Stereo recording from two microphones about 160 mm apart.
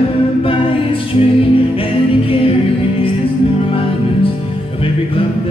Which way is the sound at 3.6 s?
35° left (ahead or behind).